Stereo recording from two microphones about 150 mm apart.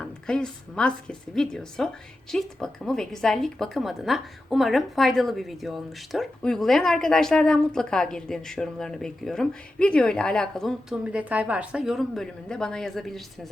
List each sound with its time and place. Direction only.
0.0 s a woman's voice: 5° left (ahead or behind)